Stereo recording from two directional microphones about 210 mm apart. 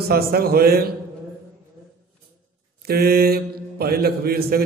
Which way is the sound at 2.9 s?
45° right (ahead or behind).